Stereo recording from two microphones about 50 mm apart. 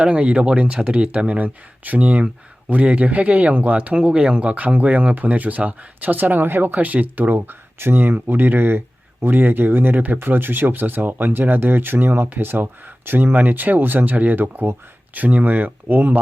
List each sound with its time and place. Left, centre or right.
0.0 s speech: right